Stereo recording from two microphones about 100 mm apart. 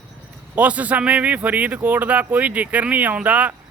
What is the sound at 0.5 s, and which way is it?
Speech, 15° right (ahead or behind).